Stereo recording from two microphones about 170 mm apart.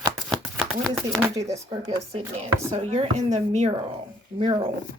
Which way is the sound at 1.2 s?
20° right (ahead or behind).